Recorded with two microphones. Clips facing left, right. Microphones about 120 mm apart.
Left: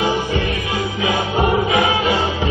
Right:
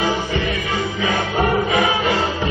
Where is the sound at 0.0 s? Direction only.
15° left (ahead or behind).